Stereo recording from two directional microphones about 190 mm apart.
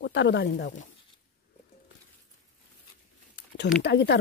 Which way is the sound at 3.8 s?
65° left (ahead or behind).